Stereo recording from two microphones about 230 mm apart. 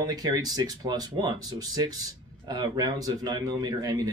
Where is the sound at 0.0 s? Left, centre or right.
Centre.